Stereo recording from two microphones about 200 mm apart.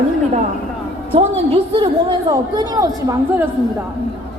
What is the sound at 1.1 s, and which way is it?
A woman's voice, 25° right (ahead or behind).